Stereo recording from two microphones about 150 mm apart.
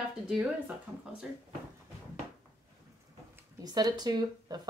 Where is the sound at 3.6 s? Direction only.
25° right (ahead or behind).